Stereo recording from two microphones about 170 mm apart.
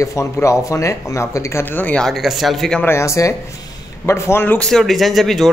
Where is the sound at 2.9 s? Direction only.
15° left (ahead or behind).